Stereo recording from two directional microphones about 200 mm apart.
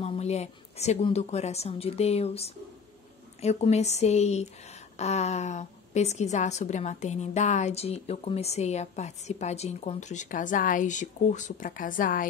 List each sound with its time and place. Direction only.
0.0 s speech: 30° left (ahead or behind)